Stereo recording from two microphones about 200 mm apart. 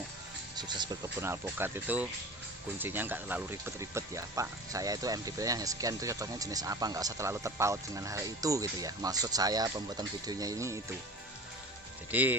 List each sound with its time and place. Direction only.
0.5 s speech: 20° right (ahead or behind)
12.1 s speech: 10° right (ahead or behind)